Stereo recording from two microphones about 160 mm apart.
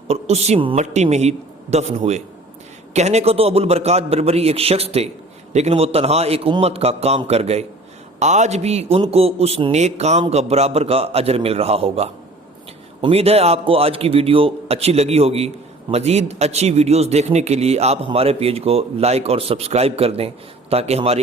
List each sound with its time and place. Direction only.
0.1 s a man's voice: 40° right (ahead or behind)